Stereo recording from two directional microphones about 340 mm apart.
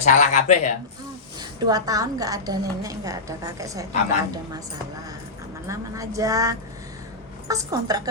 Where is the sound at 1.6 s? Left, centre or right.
Centre.